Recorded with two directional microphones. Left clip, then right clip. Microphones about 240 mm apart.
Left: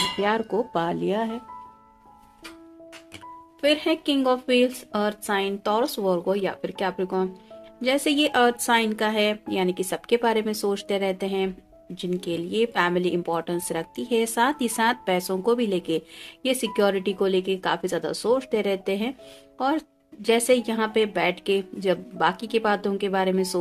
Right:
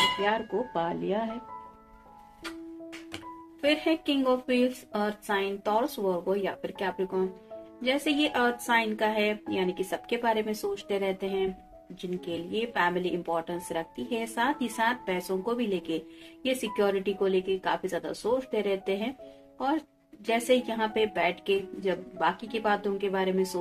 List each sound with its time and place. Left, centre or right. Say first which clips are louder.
0.2 s speech: left 4 dB; left
3.6 s speech: left 4 dB; left